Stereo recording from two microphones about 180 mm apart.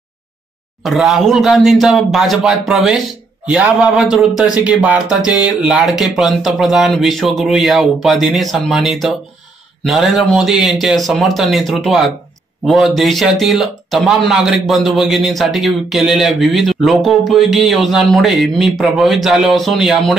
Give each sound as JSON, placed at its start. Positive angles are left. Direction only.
{"t": 0.8, "sound": "speech", "side_deg": 0}